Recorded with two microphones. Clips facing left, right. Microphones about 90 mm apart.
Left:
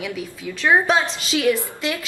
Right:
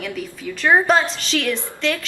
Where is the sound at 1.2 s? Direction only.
10° left (ahead or behind).